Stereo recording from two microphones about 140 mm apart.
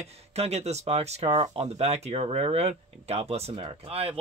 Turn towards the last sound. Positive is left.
turn(degrees=-45)  # may be behind; listen again after turning